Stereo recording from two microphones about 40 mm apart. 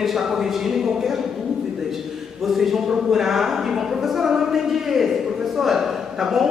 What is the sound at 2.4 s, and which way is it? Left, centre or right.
A woman's voice, centre.